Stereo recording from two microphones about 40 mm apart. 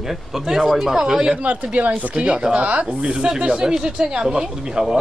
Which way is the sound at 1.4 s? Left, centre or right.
Right.